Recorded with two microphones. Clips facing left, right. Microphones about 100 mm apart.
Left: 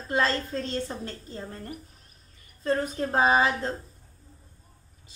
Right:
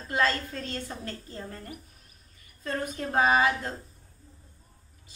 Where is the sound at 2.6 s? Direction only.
25° left (ahead or behind).